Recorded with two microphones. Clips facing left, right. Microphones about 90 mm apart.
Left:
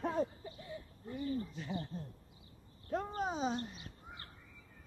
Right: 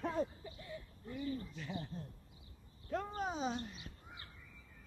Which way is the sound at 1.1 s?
35° left (ahead or behind).